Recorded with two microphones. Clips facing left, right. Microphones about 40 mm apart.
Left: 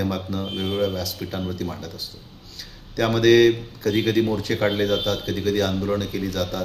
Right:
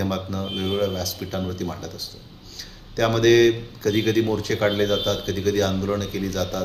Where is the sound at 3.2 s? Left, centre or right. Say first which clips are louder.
Left 1 dB; centre.